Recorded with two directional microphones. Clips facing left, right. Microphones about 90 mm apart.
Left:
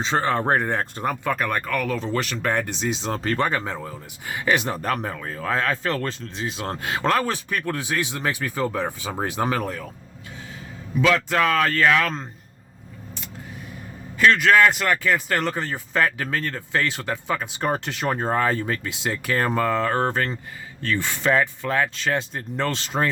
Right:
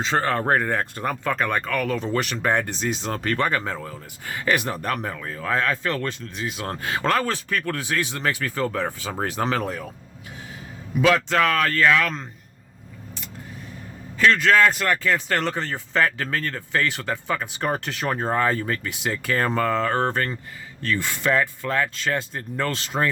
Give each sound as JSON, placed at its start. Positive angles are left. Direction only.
{"t": 0.0, "sound": "speech", "side_deg": 20}
{"t": 1.0, "sound": "speech", "side_deg": 10}
{"t": 2.9, "sound": "speech", "side_deg": 25}
{"t": 3.6, "sound": "speech", "side_deg": 15}
{"t": 11.3, "sound": "speech", "side_deg": 15}
{"t": 14.3, "sound": "speech", "side_deg": 15}